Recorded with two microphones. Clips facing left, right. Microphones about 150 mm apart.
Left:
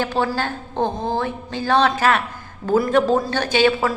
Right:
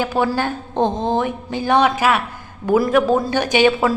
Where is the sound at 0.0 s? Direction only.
10° right (ahead or behind).